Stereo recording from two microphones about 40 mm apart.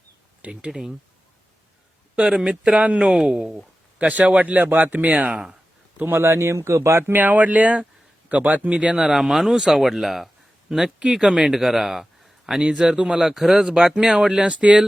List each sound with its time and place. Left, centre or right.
0.7 s speech: centre
2.3 s speech: centre
4.0 s a man's voice: right
5.3 s speech: right
6.1 s speech: right
7.1 s a man's voice: right
9.0 s speech: centre
12.5 s speech: right
13.3 s speech: centre
13.6 s speech: right
14.4 s speech: right